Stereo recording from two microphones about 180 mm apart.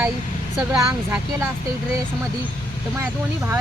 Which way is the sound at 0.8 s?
15° right (ahead or behind).